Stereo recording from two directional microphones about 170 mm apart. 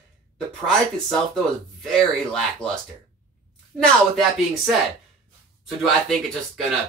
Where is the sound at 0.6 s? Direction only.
5° left (ahead or behind).